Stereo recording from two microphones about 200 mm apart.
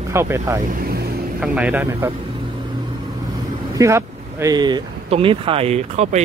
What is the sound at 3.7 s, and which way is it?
Speech, 15° right (ahead or behind).